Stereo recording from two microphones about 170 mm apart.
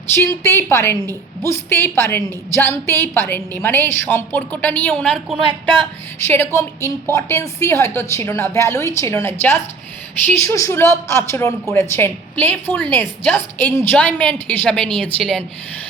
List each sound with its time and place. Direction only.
0.1 s a woman's voice: 15° left (ahead or behind)
5.4 s speech: 30° right (ahead or behind)
6.2 s a woman's voice: 15° left (ahead or behind)